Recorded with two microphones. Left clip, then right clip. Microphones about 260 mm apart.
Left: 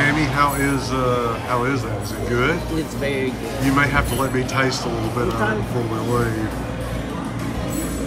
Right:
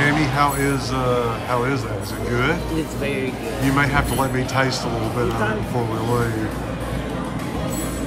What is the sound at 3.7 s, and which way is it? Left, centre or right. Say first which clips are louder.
Speech: left 1 dB; centre.